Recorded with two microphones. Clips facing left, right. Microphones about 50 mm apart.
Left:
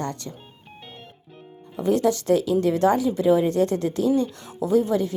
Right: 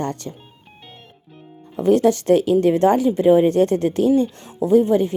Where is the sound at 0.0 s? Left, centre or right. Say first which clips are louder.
Right 4 dB; right.